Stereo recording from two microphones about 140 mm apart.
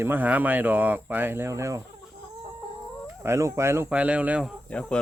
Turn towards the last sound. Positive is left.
turn(degrees=5)  # may be behind; listen again after turning